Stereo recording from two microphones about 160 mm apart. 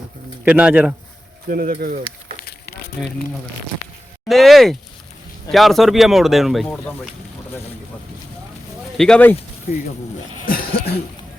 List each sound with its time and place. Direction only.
0.4 s speech: 10° right (ahead or behind)
1.5 s speech: 60° right (ahead or behind)
2.4 s a sound: 75° left (ahead or behind)
4.3 s speech: centre (ahead or behind)
9.0 s speech: 5° left (ahead or behind)
10.4 s a sound: 65° left (ahead or behind)